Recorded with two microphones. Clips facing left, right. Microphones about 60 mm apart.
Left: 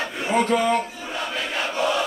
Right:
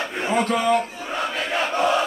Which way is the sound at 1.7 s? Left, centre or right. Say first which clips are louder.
Right 3 dB; right.